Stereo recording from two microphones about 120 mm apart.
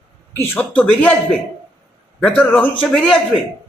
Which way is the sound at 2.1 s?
10° left (ahead or behind).